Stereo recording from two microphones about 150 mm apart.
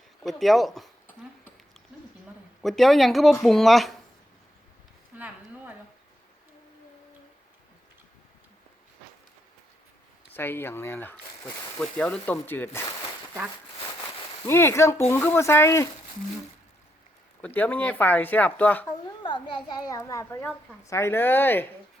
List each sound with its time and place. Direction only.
0.2 s speech: centre (ahead or behind)
1.9 s a sound: 5° right (ahead or behind)
2.6 s speech: centre (ahead or behind)
5.1 s a sound: 10° right (ahead or behind)
10.3 s speech: 15° left (ahead or behind)
14.4 s speech: 20° left (ahead or behind)
17.4 s speech: 10° left (ahead or behind)
19.2 s a child's voice: 30° left (ahead or behind); by 21.7 s 15° left (ahead or behind)